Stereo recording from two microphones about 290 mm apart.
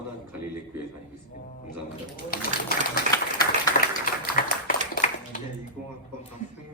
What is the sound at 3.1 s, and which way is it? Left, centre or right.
Applause, centre.